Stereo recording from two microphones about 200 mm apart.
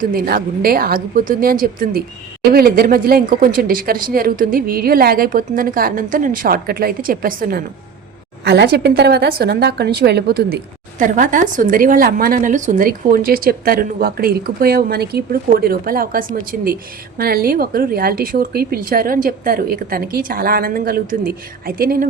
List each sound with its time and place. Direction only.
0.0 s a woman's voice: 45° right (ahead or behind)